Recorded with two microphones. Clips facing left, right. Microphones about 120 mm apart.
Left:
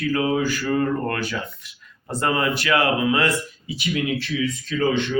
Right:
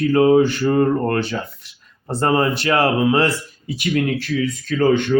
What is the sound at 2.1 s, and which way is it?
Speech, 30° right (ahead or behind).